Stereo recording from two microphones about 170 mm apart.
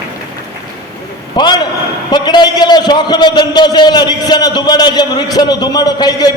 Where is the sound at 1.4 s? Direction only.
25° left (ahead or behind).